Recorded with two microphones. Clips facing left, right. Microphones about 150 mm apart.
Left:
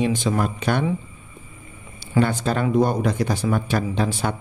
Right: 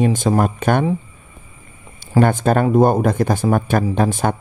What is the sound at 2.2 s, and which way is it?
Speech, 50° right (ahead or behind).